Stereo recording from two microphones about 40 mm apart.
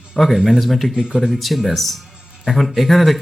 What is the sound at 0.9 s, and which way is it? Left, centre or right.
Speech, centre.